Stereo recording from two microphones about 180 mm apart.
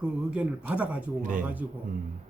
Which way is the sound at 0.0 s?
5° right (ahead or behind).